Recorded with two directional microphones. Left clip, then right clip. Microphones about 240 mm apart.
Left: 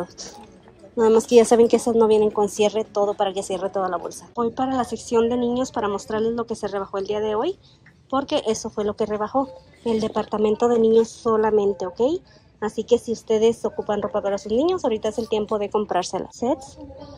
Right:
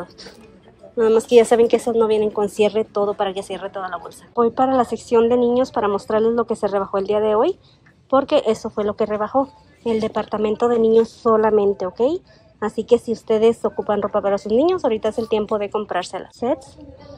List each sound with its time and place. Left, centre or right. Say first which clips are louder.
0.9 s speech: right 2 dB; centre